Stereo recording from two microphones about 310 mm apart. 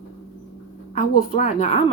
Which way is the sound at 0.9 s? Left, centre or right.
Left.